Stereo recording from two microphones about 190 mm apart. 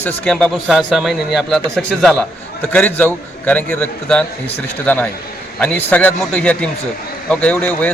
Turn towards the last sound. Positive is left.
turn(degrees=10)  # may be behind; listen again after turning